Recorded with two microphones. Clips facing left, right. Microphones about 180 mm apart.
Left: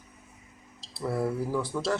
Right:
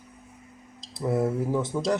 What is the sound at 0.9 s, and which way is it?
Speech, 20° right (ahead or behind).